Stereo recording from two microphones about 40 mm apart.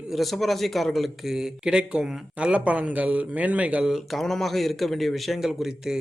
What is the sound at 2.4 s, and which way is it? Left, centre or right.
A man's voice, right.